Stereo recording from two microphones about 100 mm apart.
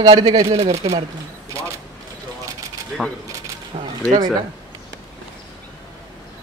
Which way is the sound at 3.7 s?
90° right.